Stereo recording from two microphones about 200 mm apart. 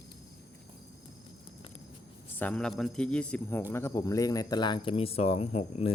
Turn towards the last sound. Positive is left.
turn(degrees=30)  # may be behind; listen again after turning